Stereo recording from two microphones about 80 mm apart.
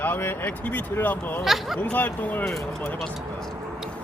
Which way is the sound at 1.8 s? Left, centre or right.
Left.